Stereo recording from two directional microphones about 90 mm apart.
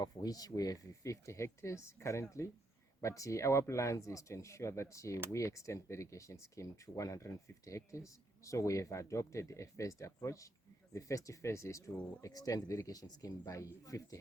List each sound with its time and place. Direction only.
0.0 s speech: 45° left (ahead or behind)